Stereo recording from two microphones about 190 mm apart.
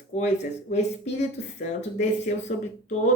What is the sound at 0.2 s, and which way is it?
Speech, 35° left (ahead or behind).